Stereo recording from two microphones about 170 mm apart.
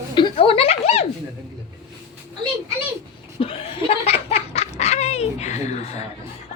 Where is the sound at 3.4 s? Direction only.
35° left (ahead or behind).